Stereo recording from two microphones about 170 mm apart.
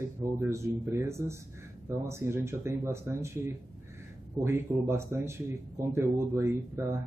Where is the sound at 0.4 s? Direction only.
15° right (ahead or behind).